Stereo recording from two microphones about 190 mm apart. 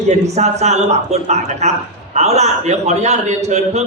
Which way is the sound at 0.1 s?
35° right (ahead or behind).